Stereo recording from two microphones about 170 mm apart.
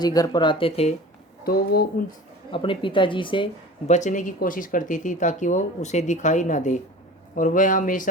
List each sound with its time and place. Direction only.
0.0 s speech: 20° left (ahead or behind)
1.5 s speech: 60° left (ahead or behind)
2.5 s speech: 30° left (ahead or behind)
3.8 s speech: 45° left (ahead or behind)